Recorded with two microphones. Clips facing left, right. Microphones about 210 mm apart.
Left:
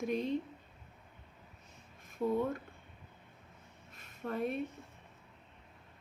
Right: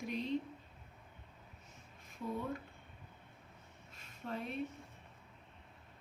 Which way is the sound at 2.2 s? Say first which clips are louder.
Left 9 dB; 60° left (ahead or behind).